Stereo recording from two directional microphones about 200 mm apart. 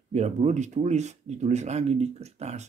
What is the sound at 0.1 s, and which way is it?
Speech, 35° right (ahead or behind).